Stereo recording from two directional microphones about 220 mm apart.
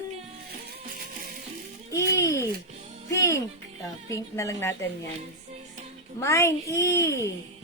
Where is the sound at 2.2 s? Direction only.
10° left (ahead or behind).